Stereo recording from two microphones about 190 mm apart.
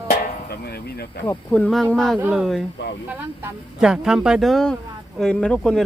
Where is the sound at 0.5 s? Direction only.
55° left (ahead or behind).